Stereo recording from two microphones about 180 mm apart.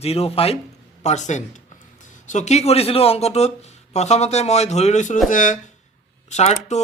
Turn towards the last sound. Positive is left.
turn(degrees=40)  # may be behind; listen again after turning